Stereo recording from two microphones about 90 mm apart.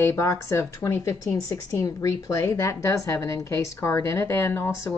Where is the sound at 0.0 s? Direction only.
30° left (ahead or behind).